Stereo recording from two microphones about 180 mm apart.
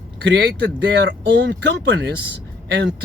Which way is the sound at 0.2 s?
75° right (ahead or behind).